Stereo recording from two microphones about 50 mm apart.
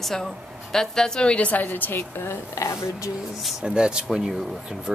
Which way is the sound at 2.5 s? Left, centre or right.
Left.